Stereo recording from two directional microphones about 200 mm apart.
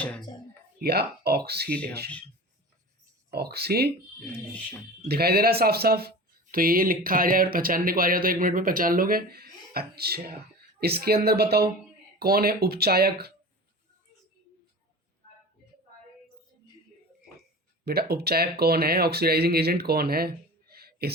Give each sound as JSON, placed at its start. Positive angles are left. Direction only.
{"t": 0.0, "sound": "a sound", "side_deg": 5}
{"t": 0.8, "sound": "speech", "side_deg": -55}
{"t": 3.2, "sound": "speech", "side_deg": -50}
{"t": 5.0, "sound": "speech", "side_deg": -50}
{"t": 17.8, "sound": "speech", "side_deg": -50}